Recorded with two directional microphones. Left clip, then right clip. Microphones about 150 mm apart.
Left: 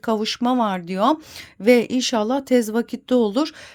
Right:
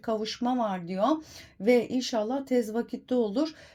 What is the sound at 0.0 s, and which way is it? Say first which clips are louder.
Speech: left 8 dB; 45° left (ahead or behind).